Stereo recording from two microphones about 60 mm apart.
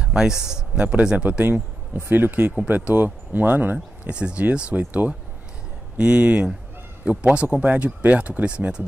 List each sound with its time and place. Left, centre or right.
0.0 s a man's voice: centre; by 4.1 s right
4.1 s speech: centre